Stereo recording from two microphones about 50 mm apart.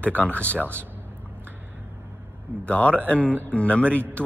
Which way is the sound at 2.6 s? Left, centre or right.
Left.